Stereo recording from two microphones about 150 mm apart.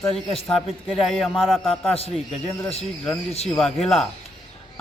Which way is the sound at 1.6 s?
40° left (ahead or behind).